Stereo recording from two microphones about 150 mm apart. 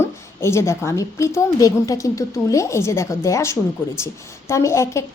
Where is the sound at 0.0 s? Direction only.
20° left (ahead or behind).